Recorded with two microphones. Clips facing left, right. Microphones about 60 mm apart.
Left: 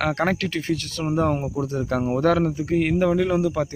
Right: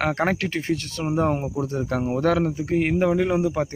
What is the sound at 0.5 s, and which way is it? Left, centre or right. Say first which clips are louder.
Speech: even; right.